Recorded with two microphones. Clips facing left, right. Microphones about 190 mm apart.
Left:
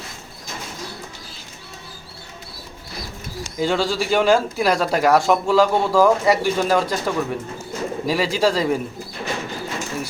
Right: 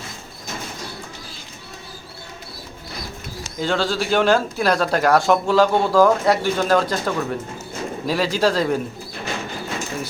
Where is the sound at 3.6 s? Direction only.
5° left (ahead or behind).